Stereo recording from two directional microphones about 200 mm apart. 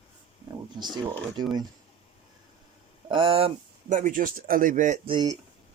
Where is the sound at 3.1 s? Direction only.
25° right (ahead or behind).